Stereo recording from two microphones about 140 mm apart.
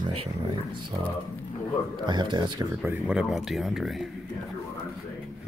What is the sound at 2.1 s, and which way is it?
Speech, 30° right (ahead or behind).